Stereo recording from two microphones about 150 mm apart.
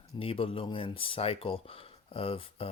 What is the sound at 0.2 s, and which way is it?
Speech, 35° left (ahead or behind).